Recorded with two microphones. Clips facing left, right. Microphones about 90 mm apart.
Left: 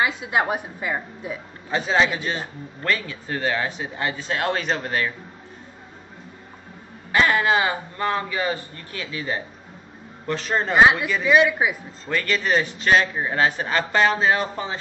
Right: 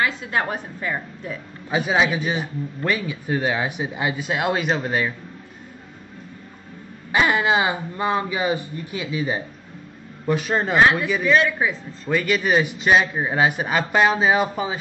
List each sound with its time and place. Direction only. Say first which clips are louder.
0.0 s a woman's voice: left 1 dB; 15° left (ahead or behind)
1.7 s a man's voice: right 1 dB; 10° right (ahead or behind)
7.1 s a man's voice: even; 15° right (ahead or behind)
10.8 s a woman's voice: left 2 dB; 15° left (ahead or behind)
12.1 s a man's voice: right 2 dB; 10° right (ahead or behind)